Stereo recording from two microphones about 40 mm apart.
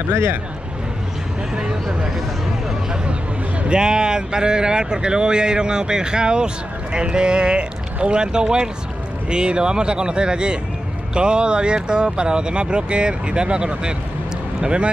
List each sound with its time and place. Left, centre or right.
1.5 s speech: centre
3.6 s speech: right